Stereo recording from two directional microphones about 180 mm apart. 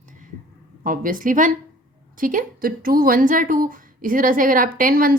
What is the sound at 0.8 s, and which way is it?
A woman's voice, 50° right (ahead or behind).